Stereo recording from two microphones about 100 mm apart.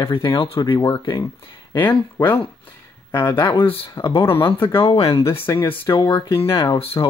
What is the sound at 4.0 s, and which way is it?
Speech, 35° left (ahead or behind).